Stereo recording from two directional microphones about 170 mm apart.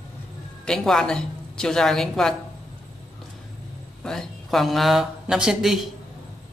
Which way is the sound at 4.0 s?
5° left (ahead or behind).